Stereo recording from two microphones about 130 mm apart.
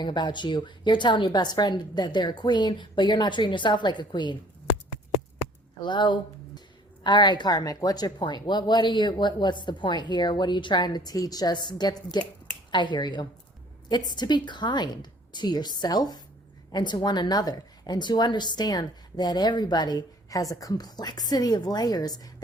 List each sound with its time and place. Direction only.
0.0 s speech: 35° left (ahead or behind)
5.8 s speech: 35° left (ahead or behind)